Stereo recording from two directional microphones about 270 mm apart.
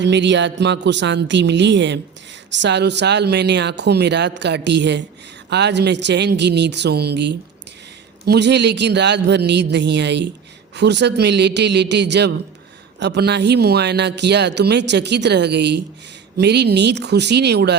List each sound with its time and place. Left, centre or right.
0.0 s speech: right